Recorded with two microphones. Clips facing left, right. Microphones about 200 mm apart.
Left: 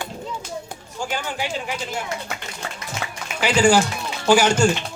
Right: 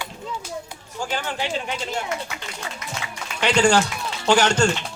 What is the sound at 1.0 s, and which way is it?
Speech, 10° left (ahead or behind).